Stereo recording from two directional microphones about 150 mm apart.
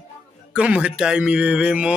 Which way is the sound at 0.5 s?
5° right (ahead or behind).